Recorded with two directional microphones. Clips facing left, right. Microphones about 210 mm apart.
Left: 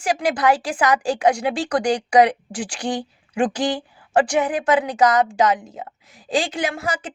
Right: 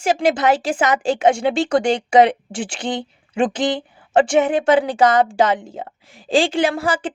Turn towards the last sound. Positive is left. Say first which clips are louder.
# right 5 dB
turn(degrees=-30)  # may be behind; listen again after turning